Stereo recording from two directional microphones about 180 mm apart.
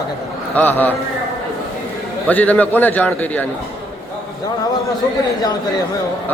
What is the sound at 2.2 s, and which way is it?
A man's voice, 10° left (ahead or behind).